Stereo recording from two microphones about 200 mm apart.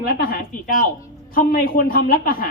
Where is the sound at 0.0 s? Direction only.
45° left (ahead or behind).